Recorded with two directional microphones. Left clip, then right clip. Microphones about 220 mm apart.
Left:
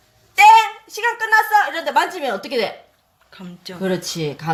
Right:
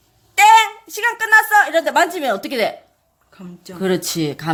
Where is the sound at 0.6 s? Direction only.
40° right (ahead or behind).